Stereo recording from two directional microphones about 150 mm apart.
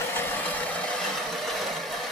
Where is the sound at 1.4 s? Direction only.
Centre (ahead or behind).